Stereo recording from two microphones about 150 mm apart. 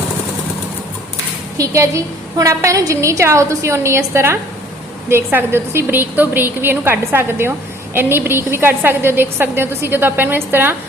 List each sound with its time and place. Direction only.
1.5 s a woman's voice: 20° right (ahead or behind)